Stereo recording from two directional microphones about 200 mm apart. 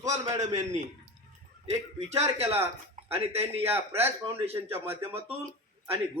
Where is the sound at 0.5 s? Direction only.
35° right (ahead or behind).